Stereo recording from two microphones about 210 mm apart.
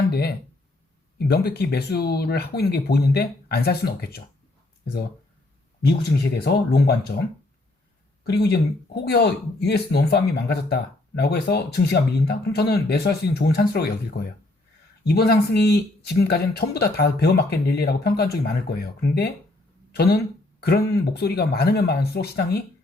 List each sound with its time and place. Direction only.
0.1 s speech: 50° left (ahead or behind)
6.0 s speech: 50° left (ahead or behind)
8.3 s speech: 50° left (ahead or behind)